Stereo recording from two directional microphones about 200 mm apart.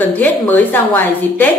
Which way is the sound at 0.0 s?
10° left (ahead or behind).